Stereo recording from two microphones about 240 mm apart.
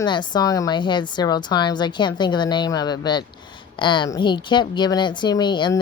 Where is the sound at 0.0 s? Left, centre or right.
Centre.